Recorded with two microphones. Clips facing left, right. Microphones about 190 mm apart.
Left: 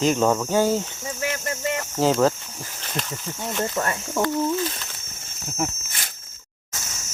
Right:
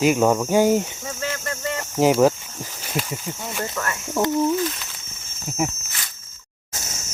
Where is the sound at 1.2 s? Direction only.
15° left (ahead or behind).